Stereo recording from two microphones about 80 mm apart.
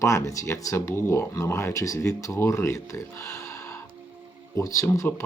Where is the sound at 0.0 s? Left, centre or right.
Left.